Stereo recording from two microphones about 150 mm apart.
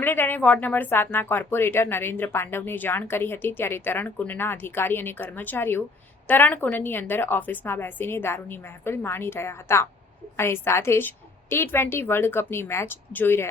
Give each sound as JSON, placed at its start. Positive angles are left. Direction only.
{"t": 0.0, "sound": "speech", "side_deg": 15}